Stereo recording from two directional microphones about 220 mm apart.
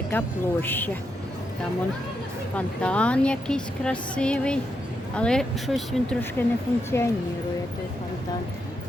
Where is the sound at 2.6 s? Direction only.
5° left (ahead or behind).